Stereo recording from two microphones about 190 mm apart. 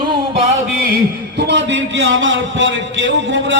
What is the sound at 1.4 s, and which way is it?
A man's voice, 65° right (ahead or behind).